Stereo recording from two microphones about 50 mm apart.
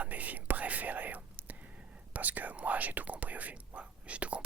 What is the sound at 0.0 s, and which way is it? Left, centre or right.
Whispering, right.